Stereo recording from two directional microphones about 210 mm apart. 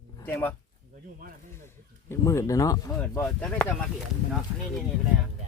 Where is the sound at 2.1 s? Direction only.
15° left (ahead or behind).